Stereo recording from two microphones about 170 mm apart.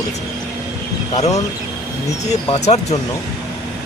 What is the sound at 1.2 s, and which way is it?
Speech, 20° left (ahead or behind).